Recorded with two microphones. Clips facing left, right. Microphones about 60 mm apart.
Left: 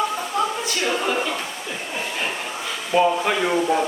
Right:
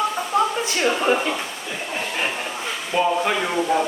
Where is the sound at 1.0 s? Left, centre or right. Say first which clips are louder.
Right 3 dB; right.